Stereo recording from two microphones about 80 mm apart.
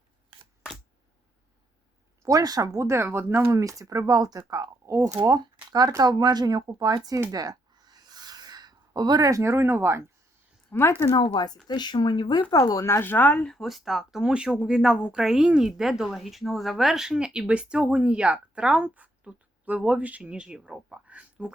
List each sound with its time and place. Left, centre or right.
2.2 s speech: right
3.6 s speech: right
6.0 s speech: right
7.3 s a sound: right
9.4 s speech: right
10.7 s speech: left
11.1 s speech: left
13.5 s speech: centre